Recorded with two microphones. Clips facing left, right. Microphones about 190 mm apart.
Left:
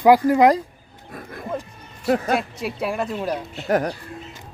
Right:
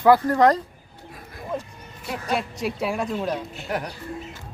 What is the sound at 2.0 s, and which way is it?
Speech, 50° left (ahead or behind).